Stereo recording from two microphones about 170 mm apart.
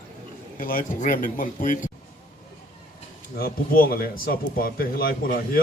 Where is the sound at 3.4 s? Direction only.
60° left (ahead or behind).